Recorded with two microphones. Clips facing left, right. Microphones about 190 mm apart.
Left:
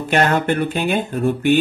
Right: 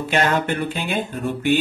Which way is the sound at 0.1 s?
50° left (ahead or behind).